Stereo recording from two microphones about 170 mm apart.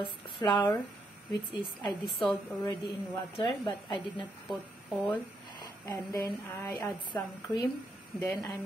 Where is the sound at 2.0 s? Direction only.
Centre (ahead or behind).